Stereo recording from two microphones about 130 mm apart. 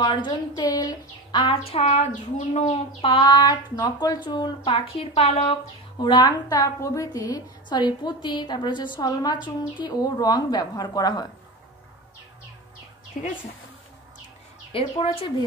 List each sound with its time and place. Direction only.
0.0 s a woman's voice: 40° left (ahead or behind); by 2.7 s 65° left (ahead or behind)
3.0 s a woman's voice: 40° left (ahead or behind)
4.6 s a woman's voice: 45° left (ahead or behind)
5.9 s a woman's voice: 35° left (ahead or behind)
14.7 s a woman's voice: 45° left (ahead or behind)